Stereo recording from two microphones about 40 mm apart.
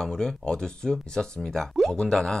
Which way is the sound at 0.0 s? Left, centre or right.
Centre.